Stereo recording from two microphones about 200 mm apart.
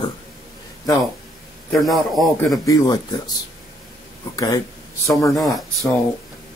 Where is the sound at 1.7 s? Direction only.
Centre (ahead or behind).